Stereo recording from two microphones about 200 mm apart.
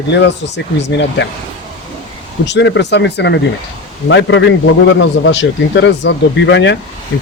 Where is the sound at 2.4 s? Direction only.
60° left (ahead or behind).